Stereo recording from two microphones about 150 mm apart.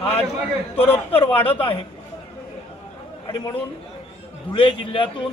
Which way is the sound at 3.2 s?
30° left (ahead or behind).